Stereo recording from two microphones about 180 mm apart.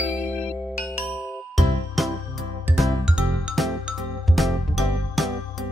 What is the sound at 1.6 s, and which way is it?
Music, centre (ahead or behind).